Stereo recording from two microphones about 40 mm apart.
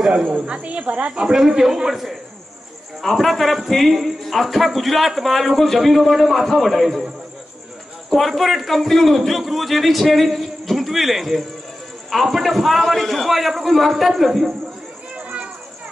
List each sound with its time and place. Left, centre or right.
0.6 s speech: right
1.3 s a man's voice: centre
3.0 s speech: centre
8.1 s speech: centre
15.1 s a sound: right